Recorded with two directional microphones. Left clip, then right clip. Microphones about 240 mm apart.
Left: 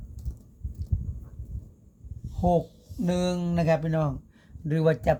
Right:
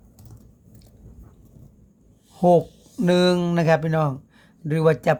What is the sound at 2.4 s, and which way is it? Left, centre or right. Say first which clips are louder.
Speech: right 8 dB; right.